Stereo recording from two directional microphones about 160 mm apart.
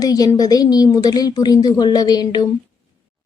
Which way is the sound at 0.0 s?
25° left (ahead or behind).